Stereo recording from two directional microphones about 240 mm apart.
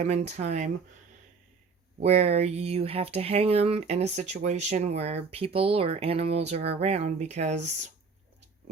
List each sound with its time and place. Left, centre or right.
0.0 s speech: right
2.0 s speech: right